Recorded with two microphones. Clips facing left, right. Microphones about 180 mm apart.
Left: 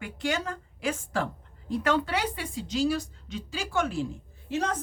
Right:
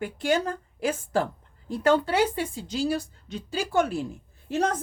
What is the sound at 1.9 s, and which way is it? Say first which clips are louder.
Speech: right 6 dB; 30° right (ahead or behind).